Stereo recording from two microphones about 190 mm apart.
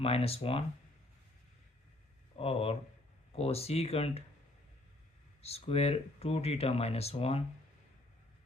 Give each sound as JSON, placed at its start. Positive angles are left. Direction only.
{"t": 0.0, "sound": "speech", "side_deg": 30}
{"t": 2.4, "sound": "speech", "side_deg": 30}
{"t": 5.4, "sound": "speech", "side_deg": 30}